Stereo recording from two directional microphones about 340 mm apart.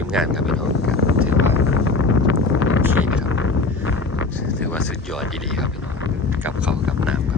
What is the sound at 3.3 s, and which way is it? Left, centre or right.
Vehicle, left.